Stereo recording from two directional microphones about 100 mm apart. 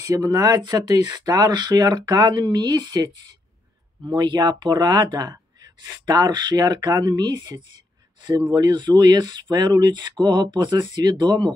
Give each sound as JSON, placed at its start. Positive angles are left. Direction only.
{"t": 0.0, "sound": "speech", "side_deg": -35}
{"t": 4.1, "sound": "speech", "side_deg": -50}